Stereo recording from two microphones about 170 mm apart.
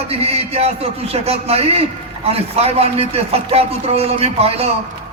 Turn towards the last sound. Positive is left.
turn(degrees=-35)  # may be behind; listen again after turning